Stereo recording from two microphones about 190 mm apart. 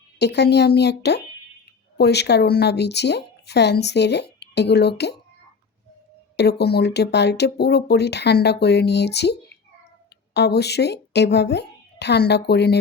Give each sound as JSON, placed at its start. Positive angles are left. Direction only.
{"t": 0.2, "sound": "speech", "side_deg": 60}
{"t": 6.3, "sound": "a woman's voice", "side_deg": 60}